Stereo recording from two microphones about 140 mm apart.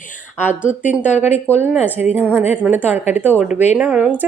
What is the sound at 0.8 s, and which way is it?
Speech, 55° left (ahead or behind).